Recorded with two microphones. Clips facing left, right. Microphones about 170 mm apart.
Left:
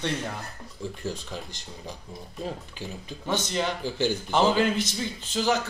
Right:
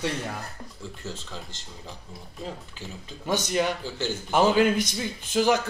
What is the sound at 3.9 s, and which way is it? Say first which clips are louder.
Speech: left 4 dB; 15° left (ahead or behind).